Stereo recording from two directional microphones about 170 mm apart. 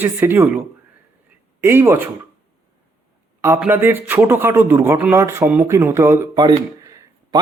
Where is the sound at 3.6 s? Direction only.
10° right (ahead or behind).